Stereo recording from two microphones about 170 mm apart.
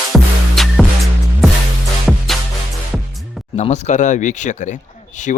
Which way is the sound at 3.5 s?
45° left (ahead or behind).